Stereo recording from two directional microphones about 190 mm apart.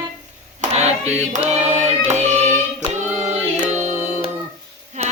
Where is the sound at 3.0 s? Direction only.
35° right (ahead or behind).